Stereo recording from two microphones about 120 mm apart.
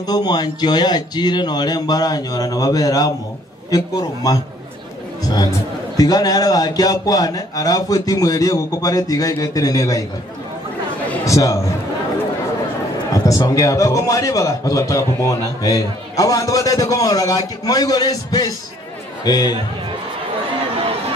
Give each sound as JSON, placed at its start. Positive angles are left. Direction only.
{"t": 0.0, "sound": "a man's voice", "side_deg": 35}
{"t": 5.9, "sound": "a man's voice", "side_deg": 30}
{"t": 11.2, "sound": "a man's voice", "side_deg": 25}
{"t": 13.1, "sound": "a man's voice", "side_deg": 30}
{"t": 20.7, "sound": "run", "side_deg": -55}